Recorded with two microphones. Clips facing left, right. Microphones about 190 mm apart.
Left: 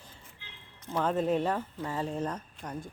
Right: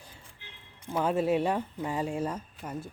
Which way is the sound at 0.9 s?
10° right (ahead or behind).